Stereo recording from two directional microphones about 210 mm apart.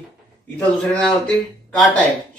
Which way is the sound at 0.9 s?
5° left (ahead or behind).